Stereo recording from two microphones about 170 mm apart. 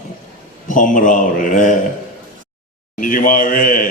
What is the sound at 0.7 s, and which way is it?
A man's voice, 50° left (ahead or behind).